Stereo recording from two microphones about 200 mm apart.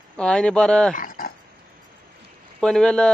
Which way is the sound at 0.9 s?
45° left (ahead or behind).